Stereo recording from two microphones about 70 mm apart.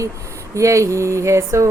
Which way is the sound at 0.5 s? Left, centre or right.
Right.